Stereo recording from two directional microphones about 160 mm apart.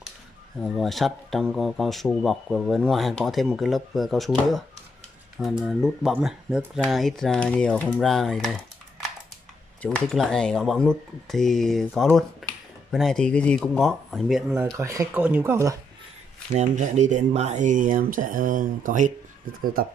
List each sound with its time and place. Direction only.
0.6 s speech: centre (ahead or behind)
9.8 s speech: 5° left (ahead or behind)
14.5 s speech: 15° right (ahead or behind)
16.5 s speech: 50° right (ahead or behind)
19.6 s speech: 65° right (ahead or behind)